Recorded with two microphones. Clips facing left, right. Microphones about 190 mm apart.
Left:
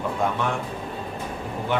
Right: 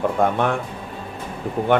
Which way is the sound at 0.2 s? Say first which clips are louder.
Right 6 dB; 55° right (ahead or behind).